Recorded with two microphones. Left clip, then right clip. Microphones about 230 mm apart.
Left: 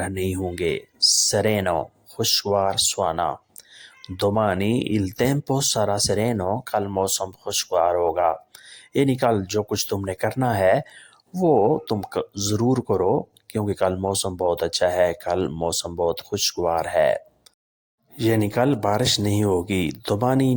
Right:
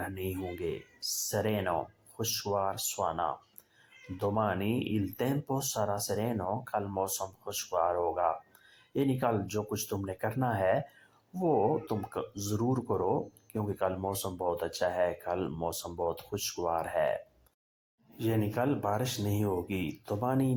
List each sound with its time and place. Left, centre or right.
0.0 s speech: left